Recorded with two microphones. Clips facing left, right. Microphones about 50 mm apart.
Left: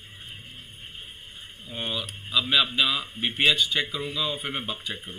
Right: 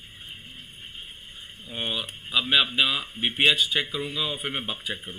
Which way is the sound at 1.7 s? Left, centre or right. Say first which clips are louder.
Right 1 dB; centre.